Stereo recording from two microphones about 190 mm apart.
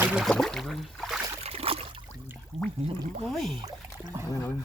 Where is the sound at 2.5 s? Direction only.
Centre (ahead or behind).